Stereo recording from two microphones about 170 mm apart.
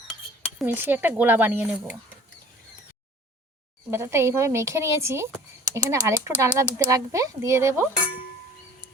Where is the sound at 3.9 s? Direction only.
15° right (ahead or behind).